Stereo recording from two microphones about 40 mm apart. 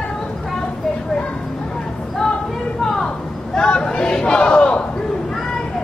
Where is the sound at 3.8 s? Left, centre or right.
Left.